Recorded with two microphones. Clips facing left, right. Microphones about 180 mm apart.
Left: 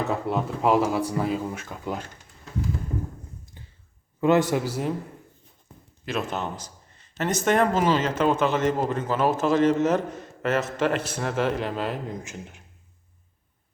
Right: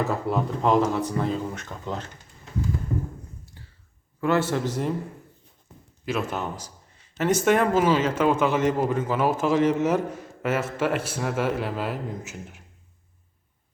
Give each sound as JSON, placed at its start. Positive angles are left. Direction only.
{"t": 0.0, "sound": "speech", "side_deg": 0}
{"t": 3.4, "sound": "a sound", "side_deg": 20}
{"t": 4.2, "sound": "speech", "side_deg": 15}
{"t": 6.1, "sound": "speech", "side_deg": -10}